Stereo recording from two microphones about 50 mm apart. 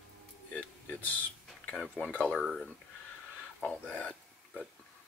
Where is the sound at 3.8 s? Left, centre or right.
Left.